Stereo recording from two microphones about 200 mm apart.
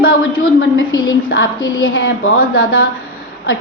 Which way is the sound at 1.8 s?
90° left.